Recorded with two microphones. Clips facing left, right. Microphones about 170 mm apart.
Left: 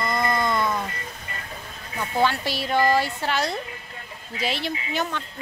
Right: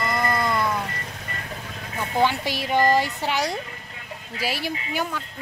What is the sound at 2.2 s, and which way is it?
Speech, 15° right (ahead or behind).